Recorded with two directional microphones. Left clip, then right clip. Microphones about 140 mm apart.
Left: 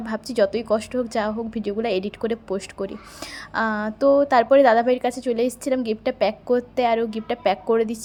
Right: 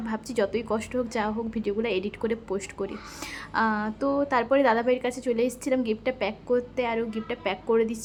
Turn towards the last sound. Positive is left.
turn(degrees=35)  # may be behind; listen again after turning